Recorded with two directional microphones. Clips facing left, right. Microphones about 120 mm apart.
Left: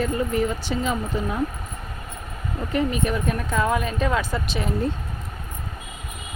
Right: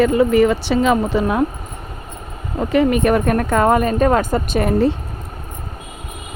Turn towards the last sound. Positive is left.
turn(degrees=-75)  # may be behind; listen again after turning